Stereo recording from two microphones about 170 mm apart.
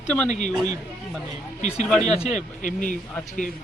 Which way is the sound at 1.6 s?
40° left (ahead or behind).